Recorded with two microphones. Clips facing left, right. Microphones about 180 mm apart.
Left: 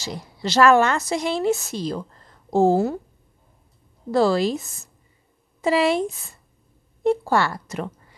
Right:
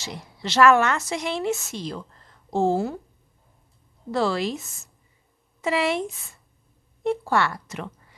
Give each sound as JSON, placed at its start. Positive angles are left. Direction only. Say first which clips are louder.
{"t": 0.0, "sound": "a woman's voice", "louder": "left 5 dB", "side_deg": 35}
{"t": 4.1, "sound": "a woman's voice", "louder": "left 5 dB", "side_deg": 35}